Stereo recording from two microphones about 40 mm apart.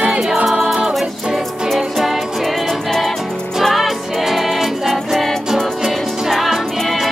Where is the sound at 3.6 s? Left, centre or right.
Centre.